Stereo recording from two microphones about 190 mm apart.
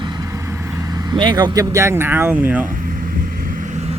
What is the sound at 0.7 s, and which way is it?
Speech, 20° right (ahead or behind).